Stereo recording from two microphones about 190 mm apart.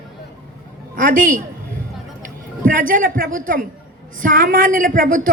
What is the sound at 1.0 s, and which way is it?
Speech, 45° right (ahead or behind).